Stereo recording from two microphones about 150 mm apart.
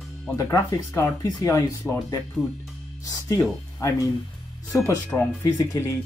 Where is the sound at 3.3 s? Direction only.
20° left (ahead or behind).